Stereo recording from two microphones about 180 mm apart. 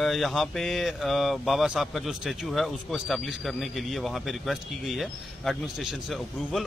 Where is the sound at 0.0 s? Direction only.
Centre (ahead or behind).